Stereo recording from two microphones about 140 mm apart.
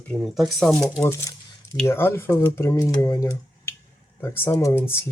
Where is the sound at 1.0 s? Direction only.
20° left (ahead or behind).